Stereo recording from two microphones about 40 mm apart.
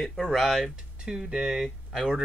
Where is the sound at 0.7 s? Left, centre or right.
Right.